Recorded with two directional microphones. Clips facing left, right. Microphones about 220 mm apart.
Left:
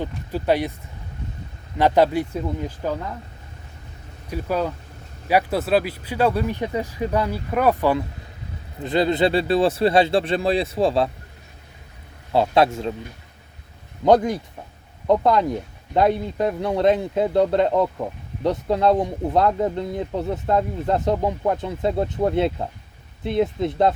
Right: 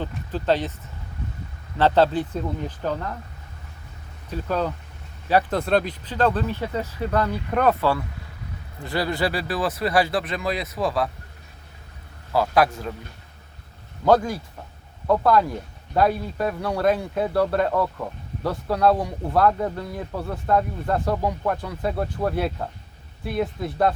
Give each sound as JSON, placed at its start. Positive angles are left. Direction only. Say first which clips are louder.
{"t": 0.3, "sound": "speech", "louder": "left 2 dB", "side_deg": 10}
{"t": 1.8, "sound": "speech", "louder": "left 1 dB", "side_deg": 10}
{"t": 4.3, "sound": "speech", "louder": "left 1 dB", "side_deg": 10}
{"t": 12.3, "sound": "speech", "louder": "left 2 dB", "side_deg": 25}
{"t": 14.0, "sound": "speech", "louder": "left 2 dB", "side_deg": 20}